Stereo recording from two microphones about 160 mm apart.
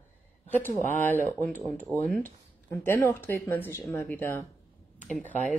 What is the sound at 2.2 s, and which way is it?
A woman's voice, 15° left (ahead or behind).